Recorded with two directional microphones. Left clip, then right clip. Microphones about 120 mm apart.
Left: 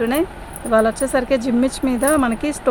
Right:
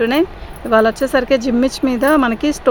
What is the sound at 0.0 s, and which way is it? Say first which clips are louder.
Speech: right 4 dB; 90° right.